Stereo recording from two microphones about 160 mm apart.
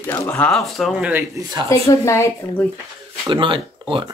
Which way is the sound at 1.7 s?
20° left (ahead or behind).